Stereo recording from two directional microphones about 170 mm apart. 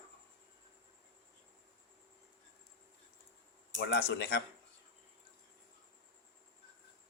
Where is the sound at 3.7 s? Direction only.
70° left (ahead or behind).